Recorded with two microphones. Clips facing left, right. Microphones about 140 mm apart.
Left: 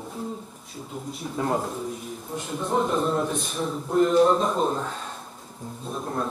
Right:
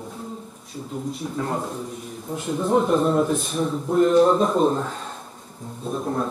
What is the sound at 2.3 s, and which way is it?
A man's voice, centre (ahead or behind).